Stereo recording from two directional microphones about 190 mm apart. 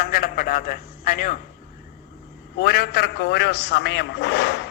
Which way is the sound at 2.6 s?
55° left (ahead or behind).